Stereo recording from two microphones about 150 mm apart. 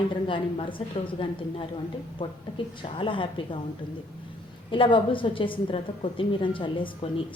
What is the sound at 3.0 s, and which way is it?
Speech, 35° left (ahead or behind).